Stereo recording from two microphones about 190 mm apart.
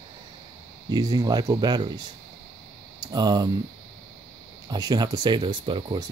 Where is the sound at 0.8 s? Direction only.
20° right (ahead or behind).